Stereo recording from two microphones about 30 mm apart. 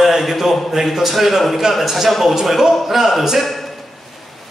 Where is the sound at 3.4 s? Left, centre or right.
Centre.